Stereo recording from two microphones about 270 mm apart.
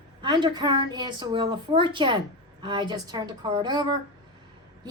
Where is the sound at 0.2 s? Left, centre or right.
Centre.